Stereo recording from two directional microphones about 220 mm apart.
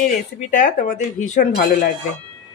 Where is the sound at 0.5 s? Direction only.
35° left (ahead or behind).